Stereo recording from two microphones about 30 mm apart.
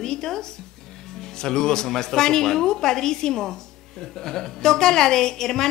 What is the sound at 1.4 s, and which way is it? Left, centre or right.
A woman's voice, centre.